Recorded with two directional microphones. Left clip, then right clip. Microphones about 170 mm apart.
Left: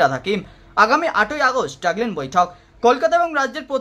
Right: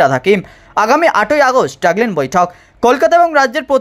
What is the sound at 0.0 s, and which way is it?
Speech, 35° right (ahead or behind).